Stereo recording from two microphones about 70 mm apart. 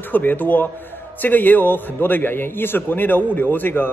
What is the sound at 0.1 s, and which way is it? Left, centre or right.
A man's voice, left.